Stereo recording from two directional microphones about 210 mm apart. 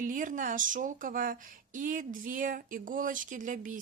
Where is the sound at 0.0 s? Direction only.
40° right (ahead or behind).